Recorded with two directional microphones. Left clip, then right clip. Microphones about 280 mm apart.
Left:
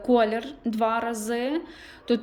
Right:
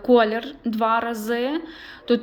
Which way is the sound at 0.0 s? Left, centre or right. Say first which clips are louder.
Right 4 dB; centre.